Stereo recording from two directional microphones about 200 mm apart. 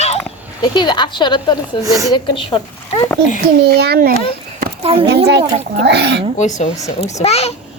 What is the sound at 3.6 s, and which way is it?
Speech, 55° right (ahead or behind).